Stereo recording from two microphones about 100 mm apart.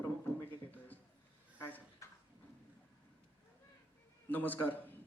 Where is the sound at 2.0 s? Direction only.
30° left (ahead or behind).